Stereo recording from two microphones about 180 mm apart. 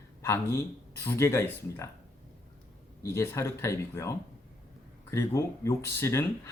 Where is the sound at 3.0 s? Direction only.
15° left (ahead or behind).